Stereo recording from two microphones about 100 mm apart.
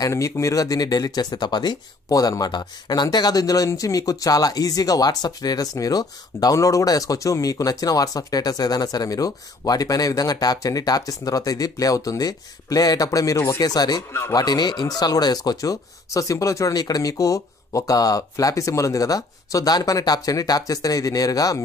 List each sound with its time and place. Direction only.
0.0 s speech: 30° left (ahead or behind)